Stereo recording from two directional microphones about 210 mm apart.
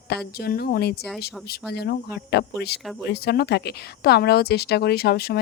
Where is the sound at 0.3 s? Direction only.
50° left (ahead or behind).